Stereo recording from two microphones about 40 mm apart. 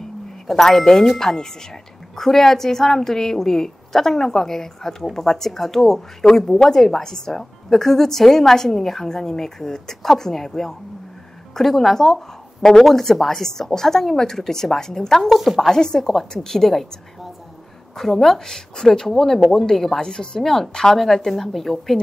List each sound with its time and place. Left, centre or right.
0.5 s speech: centre
17.9 s speech: centre